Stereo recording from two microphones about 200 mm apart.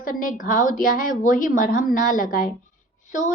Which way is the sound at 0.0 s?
45° left (ahead or behind).